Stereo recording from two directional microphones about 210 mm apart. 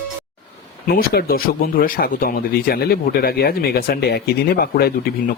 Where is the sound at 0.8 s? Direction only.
45° left (ahead or behind).